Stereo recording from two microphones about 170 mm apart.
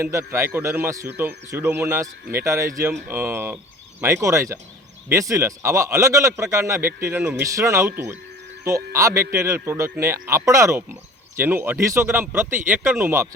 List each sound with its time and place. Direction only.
0.0 s a man's voice: 15° right (ahead or behind)